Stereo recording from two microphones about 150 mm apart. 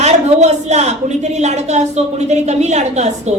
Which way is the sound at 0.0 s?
50° right (ahead or behind).